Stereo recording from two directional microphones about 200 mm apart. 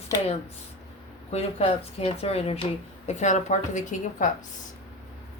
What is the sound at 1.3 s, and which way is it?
Speech, 30° left (ahead or behind).